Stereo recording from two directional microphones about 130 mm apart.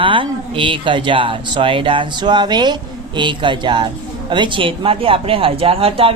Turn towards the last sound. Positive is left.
turn(degrees=-45)  # may be behind; listen again after turning